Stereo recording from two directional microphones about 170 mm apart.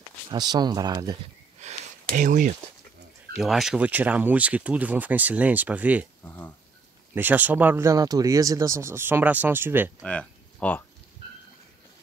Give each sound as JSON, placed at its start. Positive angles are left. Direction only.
{"t": 0.3, "sound": "speech", "side_deg": -25}
{"t": 1.6, "sound": "a sound", "side_deg": -45}
{"t": 3.3, "sound": "speech", "side_deg": 0}
{"t": 6.2, "sound": "speech", "side_deg": 10}
{"t": 7.2, "sound": "speech", "side_deg": -10}
{"t": 10.0, "sound": "speech", "side_deg": 10}